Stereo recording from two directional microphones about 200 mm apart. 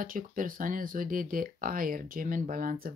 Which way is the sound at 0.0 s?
45° right (ahead or behind).